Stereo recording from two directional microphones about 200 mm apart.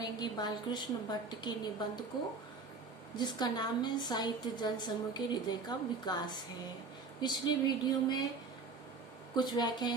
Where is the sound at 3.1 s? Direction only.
20° left (ahead or behind).